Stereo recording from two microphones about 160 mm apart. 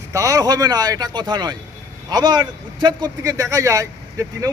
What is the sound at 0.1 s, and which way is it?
A man's voice, 20° right (ahead or behind).